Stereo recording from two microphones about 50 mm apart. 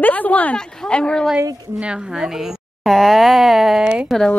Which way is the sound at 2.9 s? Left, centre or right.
Centre.